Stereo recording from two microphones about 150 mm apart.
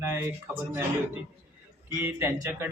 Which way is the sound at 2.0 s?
15° right (ahead or behind).